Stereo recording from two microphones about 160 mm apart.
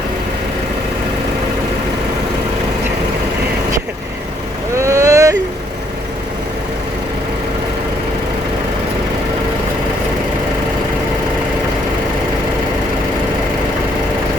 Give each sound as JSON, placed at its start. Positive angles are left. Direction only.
{"t": 4.8, "sound": "vehicle", "side_deg": -20}